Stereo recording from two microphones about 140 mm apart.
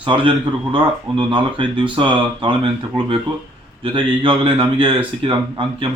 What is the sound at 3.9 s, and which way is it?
Speech, 35° right (ahead or behind).